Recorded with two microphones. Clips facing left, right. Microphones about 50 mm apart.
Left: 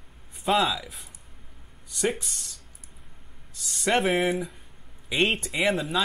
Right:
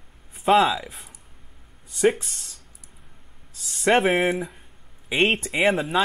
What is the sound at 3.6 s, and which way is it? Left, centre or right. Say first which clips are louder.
Speech: right 5 dB; centre.